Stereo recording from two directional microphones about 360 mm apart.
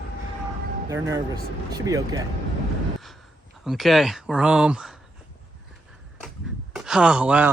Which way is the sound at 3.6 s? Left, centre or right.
Centre.